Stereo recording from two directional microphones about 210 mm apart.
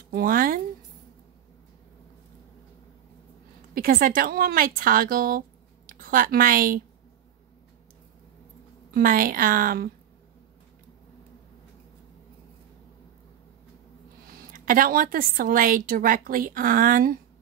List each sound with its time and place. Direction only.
0.1 s a woman's voice: 40° right (ahead or behind)
3.7 s a woman's voice: 45° right (ahead or behind)
8.9 s a woman's voice: 45° right (ahead or behind)
14.5 s a woman's voice: 40° right (ahead or behind)